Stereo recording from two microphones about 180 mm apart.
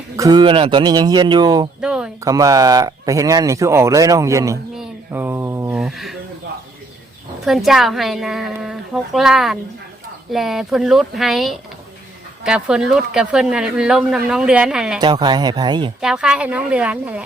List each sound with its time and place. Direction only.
0.2 s speech: 25° right (ahead or behind)
1.8 s a woman's voice: 5° right (ahead or behind)
2.2 s speech: 20° right (ahead or behind)
4.7 s a sound: 5° right (ahead or behind)
5.7 s a sound: centre (ahead or behind)
7.4 s a woman's voice: centre (ahead or behind)
15.0 s speech: 25° right (ahead or behind)
16.0 s speech: 5° right (ahead or behind)